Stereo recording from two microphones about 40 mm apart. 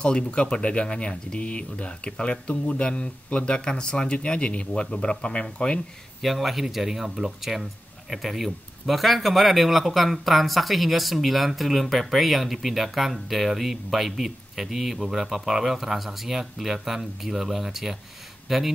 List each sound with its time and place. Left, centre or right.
0.0 s speech: left
6.2 s speech: centre